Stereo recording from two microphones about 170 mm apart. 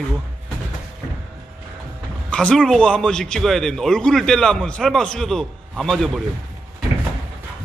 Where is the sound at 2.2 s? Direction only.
5° left (ahead or behind).